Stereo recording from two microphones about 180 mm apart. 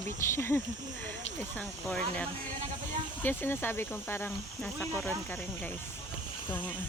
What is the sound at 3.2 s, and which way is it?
Speech, 10° left (ahead or behind).